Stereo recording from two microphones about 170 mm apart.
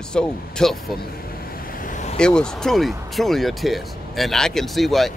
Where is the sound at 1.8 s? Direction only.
45° left (ahead or behind).